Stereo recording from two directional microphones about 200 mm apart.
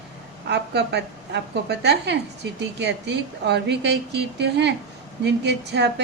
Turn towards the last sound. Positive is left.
turn(degrees=-60)  # may be behind; listen again after turning